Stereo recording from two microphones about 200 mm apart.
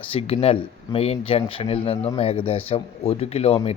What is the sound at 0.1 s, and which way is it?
Speech, 30° left (ahead or behind).